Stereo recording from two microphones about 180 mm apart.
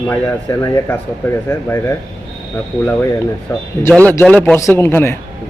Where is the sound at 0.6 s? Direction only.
10° left (ahead or behind).